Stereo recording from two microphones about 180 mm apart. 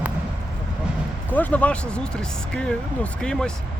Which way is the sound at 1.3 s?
10° left (ahead or behind).